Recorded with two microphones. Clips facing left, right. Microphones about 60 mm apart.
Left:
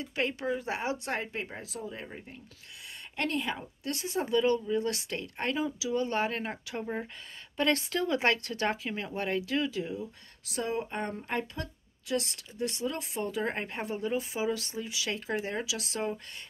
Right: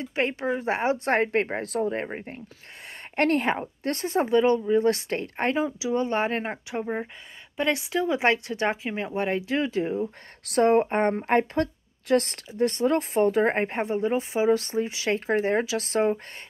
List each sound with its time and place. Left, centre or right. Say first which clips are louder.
0.0 s a woman's voice: right 5 dB; right
10.4 s a woman's voice: right 13 dB; right